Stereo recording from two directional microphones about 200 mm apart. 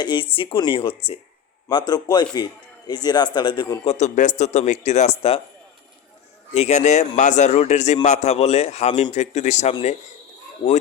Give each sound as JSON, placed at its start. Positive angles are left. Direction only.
{"t": 0.0, "sound": "a man's voice", "side_deg": 25}
{"t": 6.5, "sound": "a man's voice", "side_deg": 35}